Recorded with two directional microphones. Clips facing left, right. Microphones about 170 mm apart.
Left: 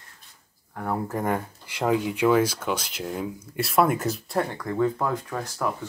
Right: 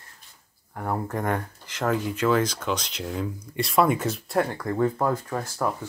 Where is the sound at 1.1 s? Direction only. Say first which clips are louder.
Left 1 dB; 5° left (ahead or behind).